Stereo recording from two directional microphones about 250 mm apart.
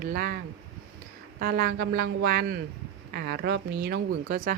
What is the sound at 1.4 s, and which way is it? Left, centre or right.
Speech, right.